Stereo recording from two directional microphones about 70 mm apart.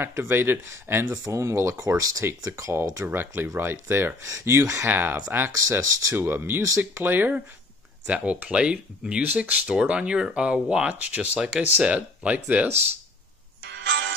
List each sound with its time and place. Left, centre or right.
0.0 s speech: right
1.1 s speech: right
5.5 s speech: right
6.1 s speech: right